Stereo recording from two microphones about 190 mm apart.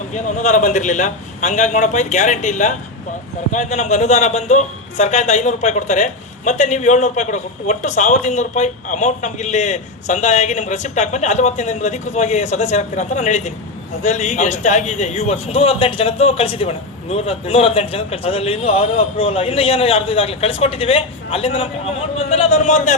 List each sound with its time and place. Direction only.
0.1 s a man's voice: 40° left (ahead or behind)